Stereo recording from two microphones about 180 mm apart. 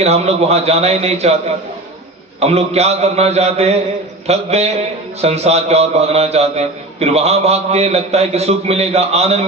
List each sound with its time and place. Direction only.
0.0 s a man's voice: 35° right (ahead or behind)
2.4 s a man's voice: 35° right (ahead or behind)